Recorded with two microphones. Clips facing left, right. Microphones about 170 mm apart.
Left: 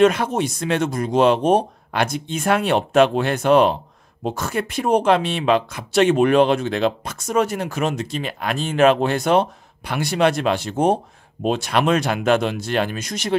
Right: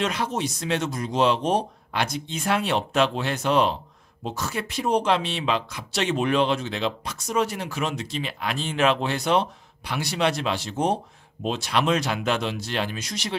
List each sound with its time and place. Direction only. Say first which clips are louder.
0.0 s speech: left 9 dB; 55° left (ahead or behind)